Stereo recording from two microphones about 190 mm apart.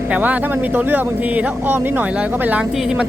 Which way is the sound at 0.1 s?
10° right (ahead or behind).